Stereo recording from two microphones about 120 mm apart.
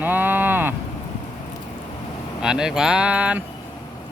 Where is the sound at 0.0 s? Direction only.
15° right (ahead or behind).